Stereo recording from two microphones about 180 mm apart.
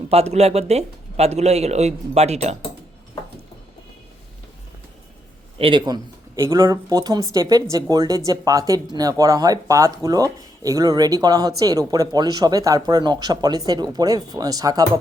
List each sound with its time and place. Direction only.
0.1 s speech: 35° right (ahead or behind)
5.5 s speech: 30° right (ahead or behind)